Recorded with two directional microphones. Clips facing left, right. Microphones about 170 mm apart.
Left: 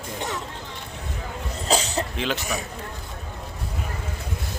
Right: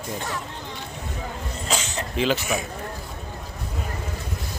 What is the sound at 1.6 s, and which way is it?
Cough, 35° left (ahead or behind).